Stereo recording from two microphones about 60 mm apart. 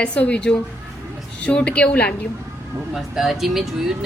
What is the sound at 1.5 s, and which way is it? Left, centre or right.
Speech, centre.